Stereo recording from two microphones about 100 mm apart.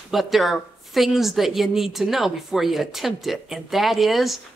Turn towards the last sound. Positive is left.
turn(degrees=0)  # may be behind; listen again after turning